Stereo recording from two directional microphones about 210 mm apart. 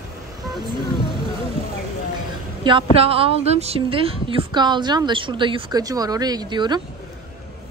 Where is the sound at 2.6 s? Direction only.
25° right (ahead or behind).